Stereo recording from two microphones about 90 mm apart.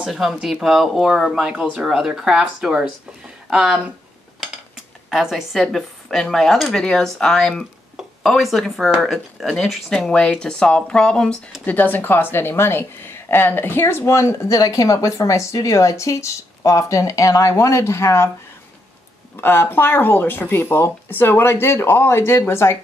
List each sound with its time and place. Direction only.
0.0 s speech: 5° right (ahead or behind)
11.6 s a woman's voice: 20° left (ahead or behind)
19.3 s speech: 25° left (ahead or behind)